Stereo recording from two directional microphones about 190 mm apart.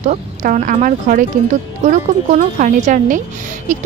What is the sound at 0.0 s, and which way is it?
A woman's voice, 40° right (ahead or behind).